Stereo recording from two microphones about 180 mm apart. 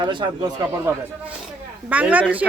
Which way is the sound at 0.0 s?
25° right (ahead or behind).